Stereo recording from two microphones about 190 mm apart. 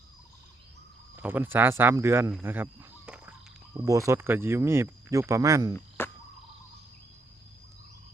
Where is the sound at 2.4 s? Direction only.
10° right (ahead or behind).